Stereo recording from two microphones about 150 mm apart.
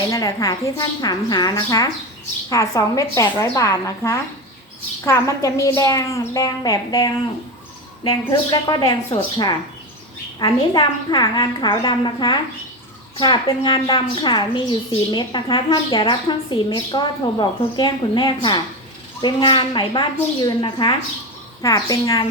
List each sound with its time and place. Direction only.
0.1 s a woman's voice: 20° left (ahead or behind)
10.4 s a woman's voice: 25° left (ahead or behind)